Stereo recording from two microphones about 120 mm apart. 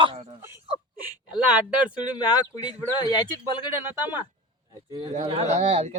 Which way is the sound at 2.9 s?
35° left (ahead or behind).